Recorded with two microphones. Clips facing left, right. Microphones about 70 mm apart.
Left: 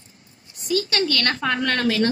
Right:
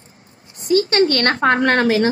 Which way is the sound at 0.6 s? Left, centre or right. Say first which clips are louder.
Right 8 dB; right.